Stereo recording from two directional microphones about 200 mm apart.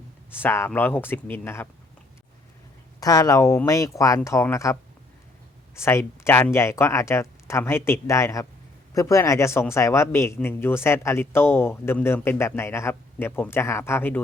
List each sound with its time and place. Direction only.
0.3 s speech: 10° left (ahead or behind)
3.0 s speech: 15° left (ahead or behind)